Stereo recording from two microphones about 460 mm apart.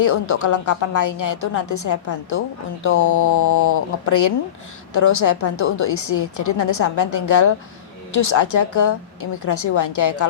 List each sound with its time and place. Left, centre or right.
0.0 s a woman's voice: left